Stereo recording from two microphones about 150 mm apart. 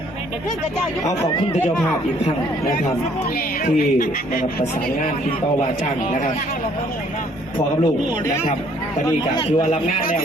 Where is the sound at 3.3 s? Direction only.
65° left (ahead or behind).